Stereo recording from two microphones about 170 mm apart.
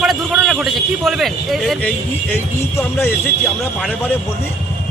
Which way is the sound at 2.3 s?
15° left (ahead or behind).